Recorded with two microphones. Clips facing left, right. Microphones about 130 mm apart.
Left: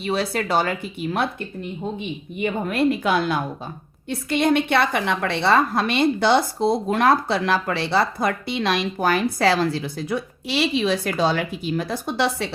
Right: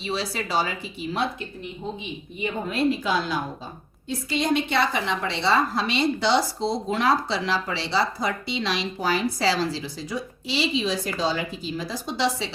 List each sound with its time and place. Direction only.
0.0 s a woman's voice: 55° left (ahead or behind)